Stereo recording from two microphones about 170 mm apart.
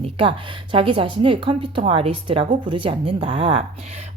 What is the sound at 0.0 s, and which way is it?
Speech, 30° right (ahead or behind).